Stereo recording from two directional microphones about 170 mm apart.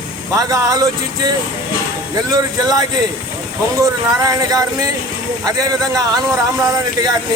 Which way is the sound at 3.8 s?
20° right (ahead or behind).